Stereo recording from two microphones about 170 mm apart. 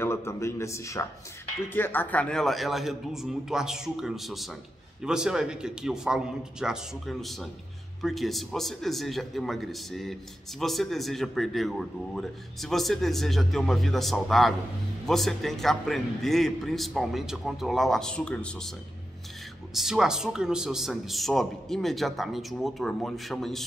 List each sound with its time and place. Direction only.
0.0 s a man's voice: 15° left (ahead or behind)
19.7 s speech: centre (ahead or behind)